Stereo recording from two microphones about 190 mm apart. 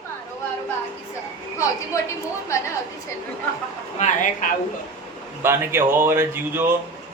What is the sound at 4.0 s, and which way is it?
Speech, 45° left (ahead or behind).